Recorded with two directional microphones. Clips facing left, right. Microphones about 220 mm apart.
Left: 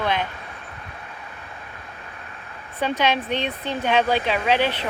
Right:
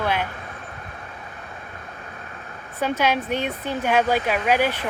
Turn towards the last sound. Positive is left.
turn(degrees=-10)  # may be behind; listen again after turning